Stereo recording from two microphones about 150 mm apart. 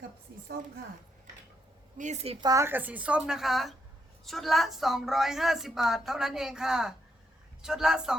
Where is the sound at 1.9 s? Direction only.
50° right (ahead or behind).